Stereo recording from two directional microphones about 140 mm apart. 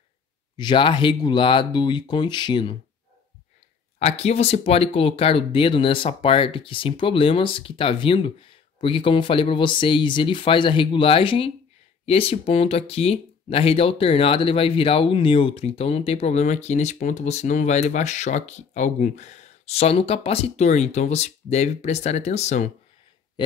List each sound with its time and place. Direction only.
0.6 s speech: 35° left (ahead or behind)
4.0 s speech: 50° left (ahead or behind)